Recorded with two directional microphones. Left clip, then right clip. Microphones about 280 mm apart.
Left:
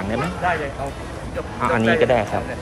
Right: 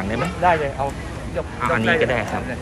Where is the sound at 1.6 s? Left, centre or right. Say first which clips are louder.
Left 1 dB; centre.